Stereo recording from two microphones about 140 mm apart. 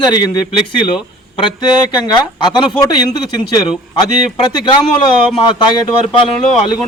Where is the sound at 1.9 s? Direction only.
30° left (ahead or behind).